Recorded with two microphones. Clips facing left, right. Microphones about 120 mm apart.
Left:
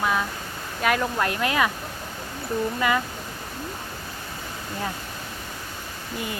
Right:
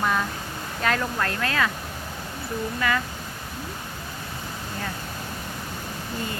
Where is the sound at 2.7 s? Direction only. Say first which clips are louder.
Left 1 dB; 20° left (ahead or behind).